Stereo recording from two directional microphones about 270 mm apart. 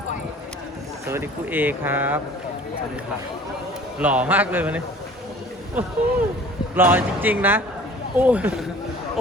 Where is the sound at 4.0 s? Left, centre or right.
Centre.